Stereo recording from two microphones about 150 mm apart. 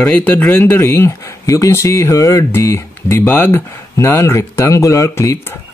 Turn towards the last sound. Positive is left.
turn(degrees=20)  # may be behind; listen again after turning